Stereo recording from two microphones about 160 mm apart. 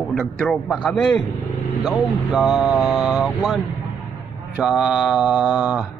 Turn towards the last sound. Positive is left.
turn(degrees=-5)  # may be behind; listen again after turning